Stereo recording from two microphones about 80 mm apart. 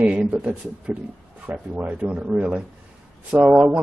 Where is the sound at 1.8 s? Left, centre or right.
Centre.